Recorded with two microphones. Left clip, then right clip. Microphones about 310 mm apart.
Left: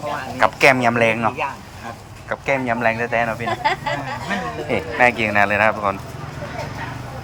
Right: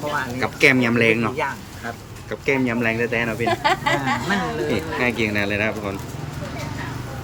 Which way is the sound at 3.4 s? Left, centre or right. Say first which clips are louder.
Right 1 dB; right.